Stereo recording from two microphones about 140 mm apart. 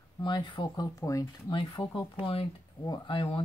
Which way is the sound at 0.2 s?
35° left (ahead or behind).